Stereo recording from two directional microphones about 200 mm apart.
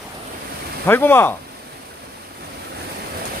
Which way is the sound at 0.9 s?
10° left (ahead or behind).